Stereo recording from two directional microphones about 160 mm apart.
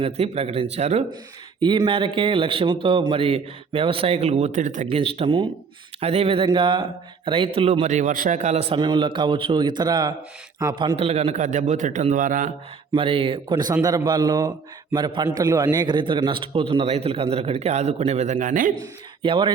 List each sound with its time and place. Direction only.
0.0 s a man's voice: 40° right (ahead or behind)
1.6 s a man's voice: 30° right (ahead or behind); by 4.9 s 50° right (ahead or behind)
4.9 s a man's voice: 35° right (ahead or behind); by 12.5 s 55° right (ahead or behind)
12.9 s a man's voice: 35° right (ahead or behind); by 18.7 s 55° right (ahead or behind)
19.2 s a man's voice: 30° right (ahead or behind)